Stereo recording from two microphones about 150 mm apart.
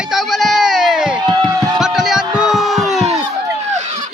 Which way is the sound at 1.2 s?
25° right (ahead or behind).